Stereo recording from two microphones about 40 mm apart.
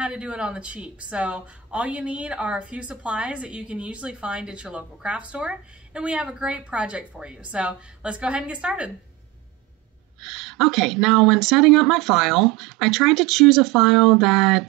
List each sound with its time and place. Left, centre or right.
0.0 s speech: right
10.2 s speech: centre